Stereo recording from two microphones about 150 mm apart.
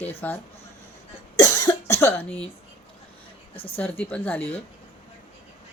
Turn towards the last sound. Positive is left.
turn(degrees=10)  # may be behind; listen again after turning